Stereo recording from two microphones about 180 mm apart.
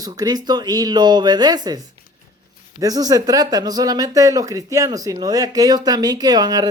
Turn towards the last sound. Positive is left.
turn(degrees=-20)  # may be behind; listen again after turning